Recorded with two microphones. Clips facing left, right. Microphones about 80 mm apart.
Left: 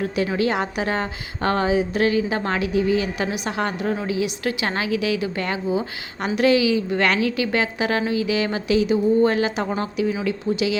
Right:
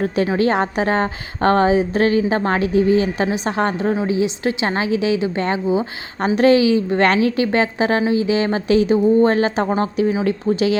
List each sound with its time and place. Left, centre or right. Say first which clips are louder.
0.3 s a woman's voice: right 5 dB; right